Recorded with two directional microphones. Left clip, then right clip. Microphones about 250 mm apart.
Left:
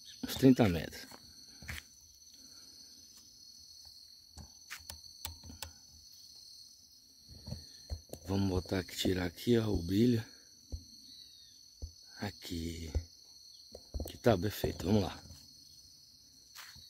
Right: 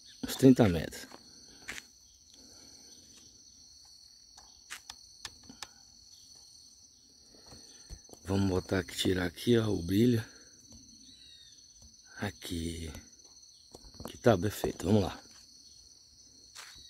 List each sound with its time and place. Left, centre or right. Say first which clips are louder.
0.2 s speech: right 4 dB; centre
4.7 s a sound: right 2 dB; centre
8.3 s speech: right 4 dB; centre
12.2 s speech: right 4 dB; centre
14.0 s speech: right 3 dB; centre